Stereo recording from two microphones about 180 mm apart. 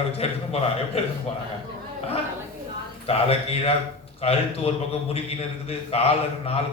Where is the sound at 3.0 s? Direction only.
35° left (ahead or behind).